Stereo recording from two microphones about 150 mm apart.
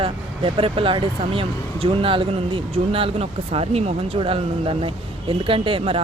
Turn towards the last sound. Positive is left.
turn(degrees=-40)  # may be behind; listen again after turning